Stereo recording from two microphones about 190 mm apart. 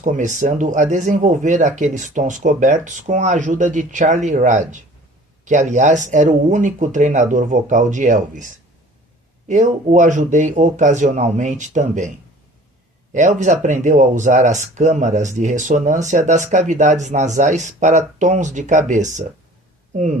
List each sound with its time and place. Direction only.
0.0 s speech: 40° right (ahead or behind)
9.5 s speech: 40° right (ahead or behind)
13.1 s speech: 40° right (ahead or behind)